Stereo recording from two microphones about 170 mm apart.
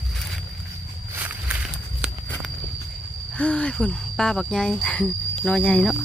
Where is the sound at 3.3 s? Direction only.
10° left (ahead or behind).